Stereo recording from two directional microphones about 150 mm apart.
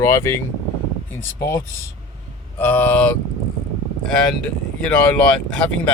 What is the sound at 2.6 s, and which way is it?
Speech, 10° left (ahead or behind).